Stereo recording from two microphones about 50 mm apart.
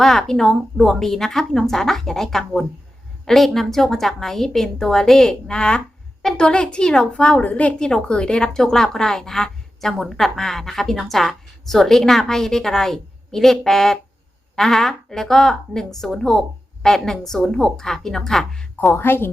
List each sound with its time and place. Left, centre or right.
0.0 s speech: centre
5.5 s a woman's voice: centre
7.8 s speech: centre
18.9 s a woman's voice: left